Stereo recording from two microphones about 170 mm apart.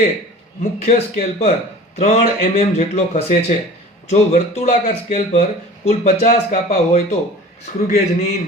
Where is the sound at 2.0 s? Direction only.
50° left (ahead or behind).